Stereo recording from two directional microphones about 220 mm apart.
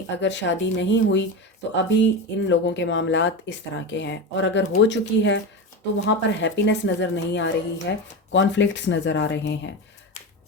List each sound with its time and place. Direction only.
0.2 s a woman's voice: 55° left (ahead or behind)